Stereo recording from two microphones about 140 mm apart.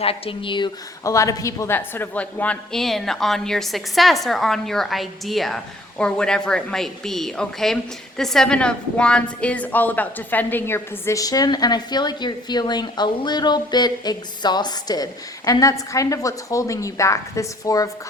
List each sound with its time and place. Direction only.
0.0 s speech: 40° left (ahead or behind)
1.0 s a woman's voice: 20° left (ahead or behind)